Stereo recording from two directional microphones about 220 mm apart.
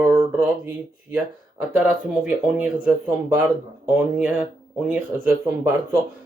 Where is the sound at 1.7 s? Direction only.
5° right (ahead or behind).